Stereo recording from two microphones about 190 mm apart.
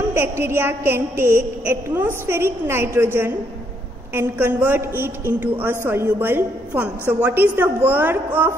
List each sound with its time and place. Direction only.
0.1 s a woman's voice: 10° right (ahead or behind)